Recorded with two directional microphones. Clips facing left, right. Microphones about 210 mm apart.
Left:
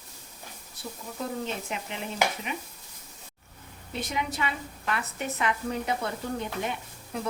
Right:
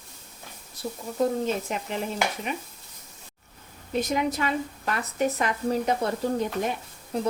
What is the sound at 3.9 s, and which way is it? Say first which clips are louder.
A woman's voice: right 7 dB; 45° right (ahead or behind).